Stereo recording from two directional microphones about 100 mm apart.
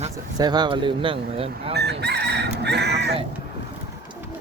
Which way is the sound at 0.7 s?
55° right (ahead or behind).